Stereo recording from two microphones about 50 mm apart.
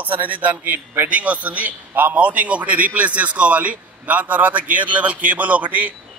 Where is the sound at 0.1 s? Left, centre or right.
Right.